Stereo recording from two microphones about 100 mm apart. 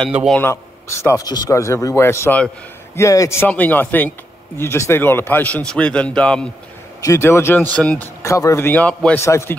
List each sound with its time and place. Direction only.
0.4 s speech: 25° left (ahead or behind)
3.4 s speech: 15° left (ahead or behind)
7.0 s speech: 30° left (ahead or behind)
7.7 s speech: 10° left (ahead or behind)
8.2 s speech: 30° left (ahead or behind)
8.8 s speech: 10° left (ahead or behind)
9.2 s speech: 25° left (ahead or behind)